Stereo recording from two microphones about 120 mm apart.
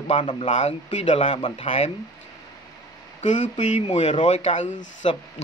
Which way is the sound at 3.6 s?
75° left (ahead or behind).